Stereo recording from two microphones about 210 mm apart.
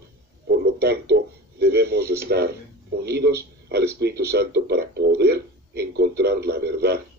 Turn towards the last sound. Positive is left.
turn(degrees=-50)  # may be behind; listen again after turning